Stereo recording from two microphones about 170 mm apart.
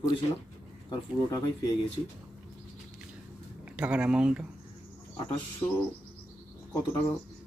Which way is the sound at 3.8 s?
5° right (ahead or behind).